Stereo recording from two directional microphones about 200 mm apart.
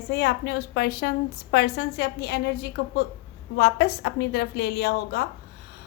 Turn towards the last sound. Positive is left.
turn(degrees=55)  # may be behind; listen again after turning